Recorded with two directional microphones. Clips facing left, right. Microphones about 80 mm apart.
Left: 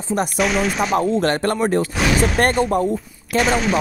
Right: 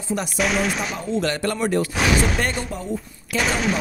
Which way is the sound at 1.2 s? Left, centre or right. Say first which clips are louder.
Left 4 dB; left.